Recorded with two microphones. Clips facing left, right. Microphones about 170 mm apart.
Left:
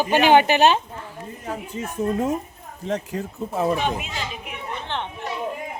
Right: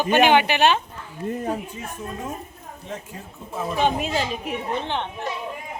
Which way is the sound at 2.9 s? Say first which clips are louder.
Left 9 dB; 75° left (ahead or behind).